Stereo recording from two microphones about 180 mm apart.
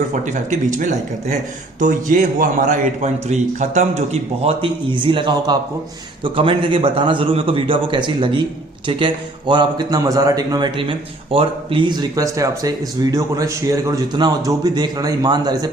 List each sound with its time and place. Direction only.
0.1 s a man's voice: 45° right (ahead or behind); by 15.7 s 20° right (ahead or behind)